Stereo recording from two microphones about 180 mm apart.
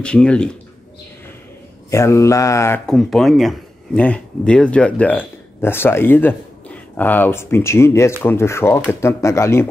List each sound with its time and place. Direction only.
0.0 s speech: 5° left (ahead or behind)
1.9 s speech: 15° left (ahead or behind)
2.9 s speech: centre (ahead or behind)